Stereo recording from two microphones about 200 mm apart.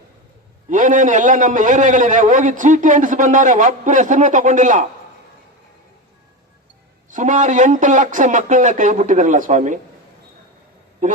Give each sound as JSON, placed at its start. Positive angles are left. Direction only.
{"t": 0.7, "sound": "a man's voice", "side_deg": -40}
{"t": 7.1, "sound": "a man's voice", "side_deg": -40}